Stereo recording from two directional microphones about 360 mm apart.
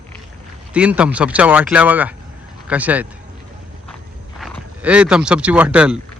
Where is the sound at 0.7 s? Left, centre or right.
Centre.